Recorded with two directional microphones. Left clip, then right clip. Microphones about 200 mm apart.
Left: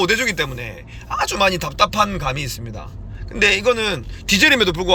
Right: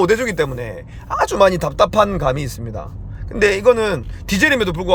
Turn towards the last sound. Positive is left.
turn(degrees=-15)  # may be behind; listen again after turning